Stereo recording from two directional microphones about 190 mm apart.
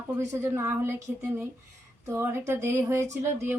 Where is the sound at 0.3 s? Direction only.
15° right (ahead or behind).